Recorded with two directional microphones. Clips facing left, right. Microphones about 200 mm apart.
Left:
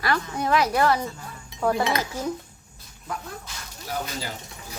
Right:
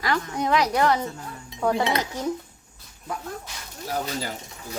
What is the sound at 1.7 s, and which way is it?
Cutlery, 25° right (ahead or behind).